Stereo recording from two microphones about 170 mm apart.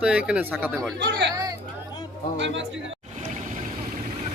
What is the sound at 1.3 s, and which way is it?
Speech, 20° right (ahead or behind).